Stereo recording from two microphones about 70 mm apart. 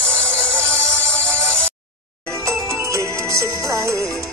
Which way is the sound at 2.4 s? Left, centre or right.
Right.